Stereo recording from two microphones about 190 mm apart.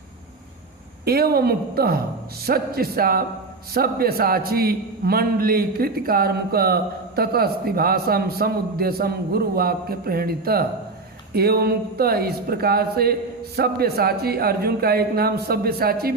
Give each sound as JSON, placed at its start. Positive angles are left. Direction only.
{"t": 1.0, "sound": "a man's voice", "side_deg": -55}